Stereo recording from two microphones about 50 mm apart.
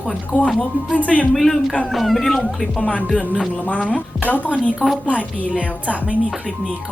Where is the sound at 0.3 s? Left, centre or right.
Centre.